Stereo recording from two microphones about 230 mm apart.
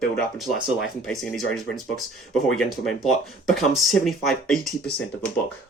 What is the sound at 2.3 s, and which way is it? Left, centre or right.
Speech, centre.